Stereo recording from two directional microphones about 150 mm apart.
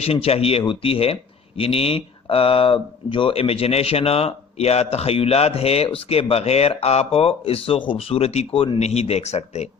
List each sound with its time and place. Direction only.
0.0 s speech: 40° left (ahead or behind)